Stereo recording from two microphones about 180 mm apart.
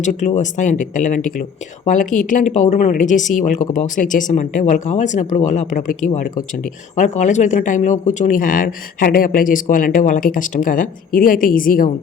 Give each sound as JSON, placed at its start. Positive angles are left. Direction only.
{"t": 0.0, "sound": "speech", "side_deg": 40}